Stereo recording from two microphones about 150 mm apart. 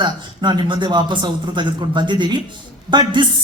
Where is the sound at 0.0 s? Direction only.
30° right (ahead or behind).